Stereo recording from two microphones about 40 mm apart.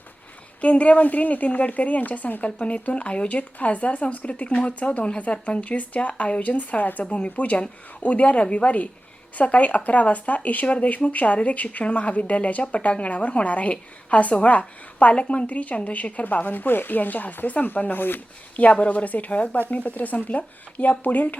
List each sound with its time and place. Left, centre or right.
0.6 s speech: left
18.5 s speech: left